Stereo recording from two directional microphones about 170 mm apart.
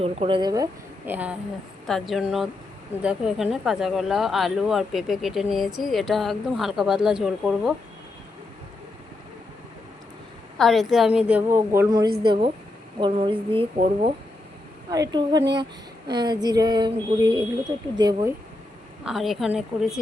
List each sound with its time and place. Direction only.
0.0 s speech: 35° right (ahead or behind); by 7.7 s centre (ahead or behind)
10.6 s a woman's voice: centre (ahead or behind); by 13.7 s 30° right (ahead or behind)
14.8 s speech: 20° right (ahead or behind)
19.0 s speech: centre (ahead or behind)